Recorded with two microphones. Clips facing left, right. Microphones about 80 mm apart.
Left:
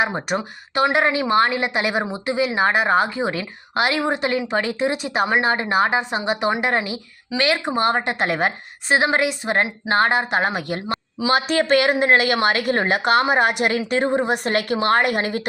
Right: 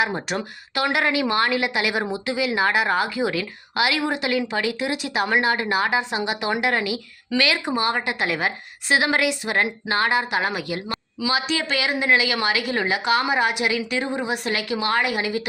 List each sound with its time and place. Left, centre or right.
0.3 s a woman's voice: left
8.9 s a woman's voice: left